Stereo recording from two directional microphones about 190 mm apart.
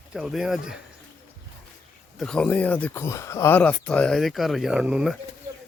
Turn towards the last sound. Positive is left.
turn(degrees=0)  # may be behind; listen again after turning